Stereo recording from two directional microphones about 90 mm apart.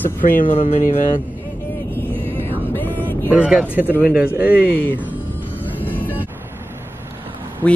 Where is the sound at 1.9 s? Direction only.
25° left (ahead or behind).